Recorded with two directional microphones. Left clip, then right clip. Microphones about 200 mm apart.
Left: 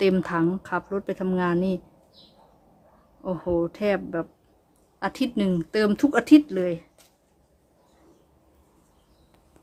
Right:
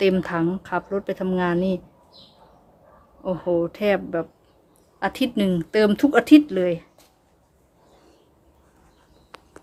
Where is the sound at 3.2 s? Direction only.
Centre (ahead or behind).